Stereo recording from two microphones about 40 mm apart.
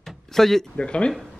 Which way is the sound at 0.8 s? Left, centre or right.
Left.